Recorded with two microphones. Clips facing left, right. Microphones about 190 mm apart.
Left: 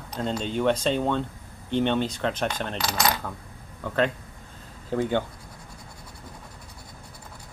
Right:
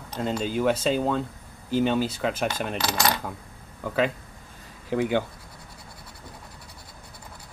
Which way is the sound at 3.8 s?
5° right (ahead or behind).